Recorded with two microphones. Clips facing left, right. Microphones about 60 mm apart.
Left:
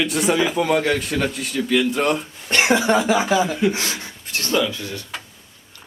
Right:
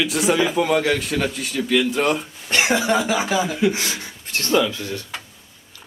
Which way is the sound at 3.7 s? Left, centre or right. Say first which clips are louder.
Even; left.